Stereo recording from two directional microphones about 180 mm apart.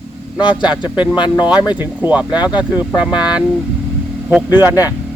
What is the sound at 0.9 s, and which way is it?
Speech, 5° right (ahead or behind).